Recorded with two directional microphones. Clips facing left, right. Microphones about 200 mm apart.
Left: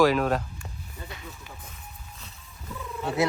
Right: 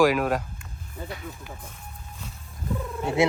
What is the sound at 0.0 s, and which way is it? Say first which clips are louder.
Speech: right 1 dB; 10° right (ahead or behind).